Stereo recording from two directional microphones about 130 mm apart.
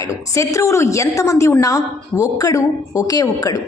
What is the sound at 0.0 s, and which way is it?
A woman's voice, 25° left (ahead or behind).